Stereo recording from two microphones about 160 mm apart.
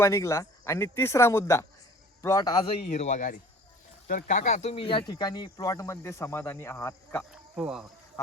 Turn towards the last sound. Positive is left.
turn(degrees=-5)  # may be behind; listen again after turning